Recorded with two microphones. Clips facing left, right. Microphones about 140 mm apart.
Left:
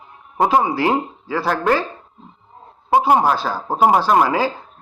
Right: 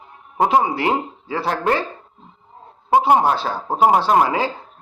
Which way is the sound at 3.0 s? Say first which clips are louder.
Even; 25° right (ahead or behind).